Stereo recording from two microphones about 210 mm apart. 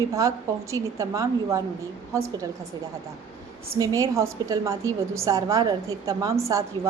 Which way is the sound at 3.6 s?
15° right (ahead or behind).